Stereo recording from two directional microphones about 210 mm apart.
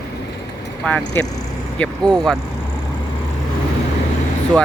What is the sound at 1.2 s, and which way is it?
Speech, 10° left (ahead or behind).